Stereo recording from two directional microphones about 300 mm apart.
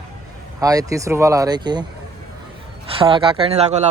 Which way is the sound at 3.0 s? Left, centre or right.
Centre.